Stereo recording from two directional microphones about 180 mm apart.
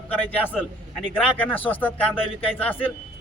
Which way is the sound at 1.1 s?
10° left (ahead or behind).